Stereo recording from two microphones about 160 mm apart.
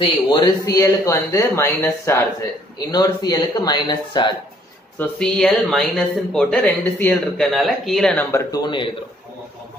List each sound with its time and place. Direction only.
0.0 s a man's voice: 30° left (ahead or behind)
0.7 s speech: 20° left (ahead or behind)
4.9 s speech: 10° left (ahead or behind)
7.4 s speech: centre (ahead or behind); by 8.9 s 30° left (ahead or behind)